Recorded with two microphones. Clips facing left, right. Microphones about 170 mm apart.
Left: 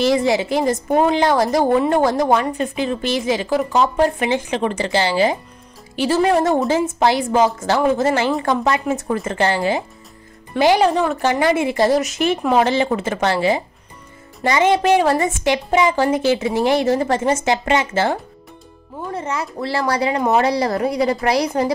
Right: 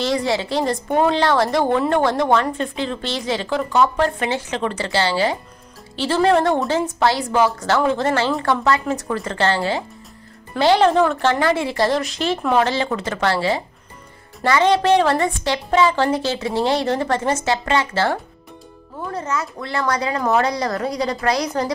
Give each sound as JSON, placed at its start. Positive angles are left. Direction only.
{"t": 0.1, "sound": "a woman's voice", "side_deg": 20}
{"t": 6.5, "sound": "a woman's voice", "side_deg": 5}
{"t": 6.9, "sound": "a woman's voice", "side_deg": 20}
{"t": 19.1, "sound": "a woman's voice", "side_deg": 30}